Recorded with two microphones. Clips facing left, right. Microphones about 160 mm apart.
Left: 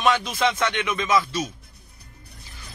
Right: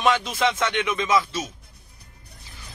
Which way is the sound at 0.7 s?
20° right (ahead or behind).